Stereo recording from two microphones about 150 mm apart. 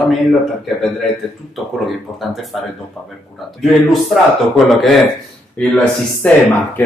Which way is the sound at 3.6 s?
Centre (ahead or behind).